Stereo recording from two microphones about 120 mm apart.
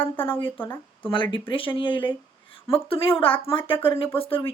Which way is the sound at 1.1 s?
45° left (ahead or behind).